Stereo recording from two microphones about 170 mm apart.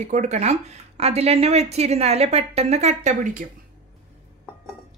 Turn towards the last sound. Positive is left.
turn(degrees=-50)  # may be behind; listen again after turning